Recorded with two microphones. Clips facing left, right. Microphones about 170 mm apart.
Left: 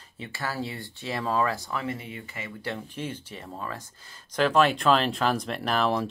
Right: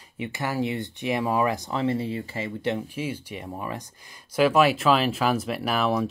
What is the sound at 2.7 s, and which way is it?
Speech, 10° right (ahead or behind).